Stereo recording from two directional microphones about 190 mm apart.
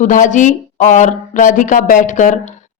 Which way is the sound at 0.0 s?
40° left (ahead or behind).